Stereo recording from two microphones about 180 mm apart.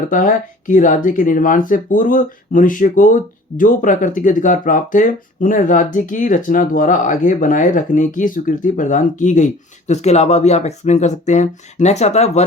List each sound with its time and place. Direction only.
0.1 s speech: 50° left (ahead or behind)